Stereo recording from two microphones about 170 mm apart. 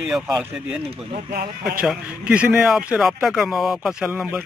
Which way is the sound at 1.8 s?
5° right (ahead or behind).